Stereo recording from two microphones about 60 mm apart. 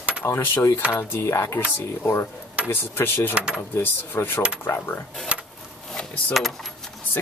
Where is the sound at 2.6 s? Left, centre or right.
Left.